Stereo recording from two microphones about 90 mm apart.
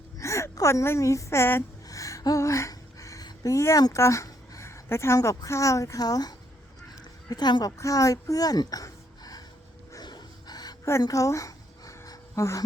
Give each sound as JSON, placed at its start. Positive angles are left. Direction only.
{"t": 0.2, "sound": "a woman's voice", "side_deg": 35}
{"t": 1.9, "sound": "gasp", "side_deg": 40}
{"t": 3.2, "sound": "speech", "side_deg": 40}
{"t": 7.8, "sound": "speech", "side_deg": 40}
{"t": 10.0, "sound": "a sound", "side_deg": 50}